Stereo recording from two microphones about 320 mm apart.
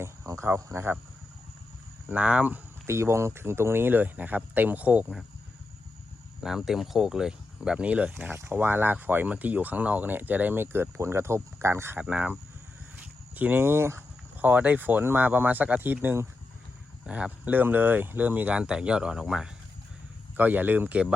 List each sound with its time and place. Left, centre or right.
0.0 s speech: centre
2.0 s speech: centre
6.4 s speech: centre